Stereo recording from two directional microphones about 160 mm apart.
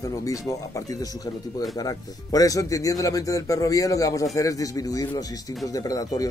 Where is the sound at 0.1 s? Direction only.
20° left (ahead or behind).